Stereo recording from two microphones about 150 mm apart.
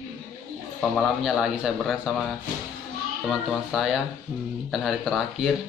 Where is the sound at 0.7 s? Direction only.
Centre (ahead or behind).